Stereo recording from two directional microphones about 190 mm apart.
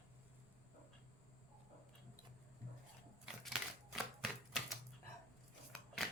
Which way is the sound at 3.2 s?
Centre (ahead or behind).